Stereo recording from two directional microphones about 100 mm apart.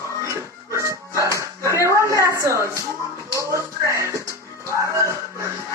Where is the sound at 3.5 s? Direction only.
30° right (ahead or behind).